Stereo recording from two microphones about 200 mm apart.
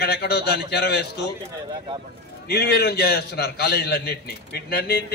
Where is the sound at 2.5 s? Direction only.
55° left (ahead or behind).